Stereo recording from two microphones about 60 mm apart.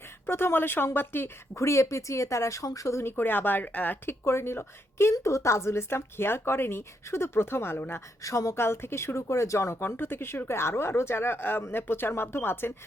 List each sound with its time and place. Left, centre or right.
0.3 s speech: left
1.5 s speech: left
3.1 s speech: left
4.2 s a woman's voice: left
5.1 s a woman's voice: left
8.2 s a woman's voice: left
9.8 s a woman's voice: left